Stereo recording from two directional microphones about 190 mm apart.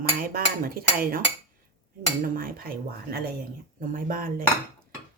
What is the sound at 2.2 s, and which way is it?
Speech, 50° right (ahead or behind).